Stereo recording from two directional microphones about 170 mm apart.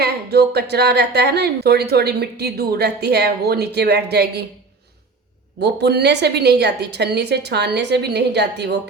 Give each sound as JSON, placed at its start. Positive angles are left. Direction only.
{"t": 0.0, "sound": "a woman's voice", "side_deg": -70}
{"t": 5.5, "sound": "a woman's voice", "side_deg": -80}